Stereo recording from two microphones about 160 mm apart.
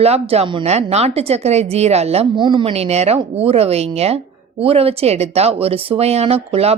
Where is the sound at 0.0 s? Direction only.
40° right (ahead or behind).